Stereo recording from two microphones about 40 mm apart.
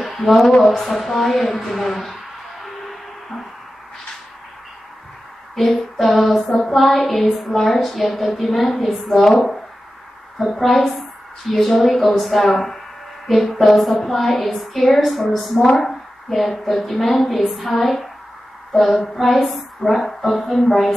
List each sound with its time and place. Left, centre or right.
0.0 s a sound: centre
0.7 s a woman's voice: centre
2.6 s music: centre
5.6 s a woman's voice: centre
10.6 s a woman's voice: centre
15.7 s a sound: centre
16.5 s a woman's voice: centre